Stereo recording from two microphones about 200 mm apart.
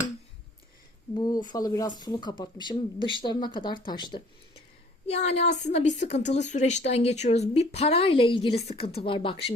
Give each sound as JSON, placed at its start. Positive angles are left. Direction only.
{"t": 1.1, "sound": "speech", "side_deg": 20}
{"t": 5.0, "sound": "a woman's voice", "side_deg": 30}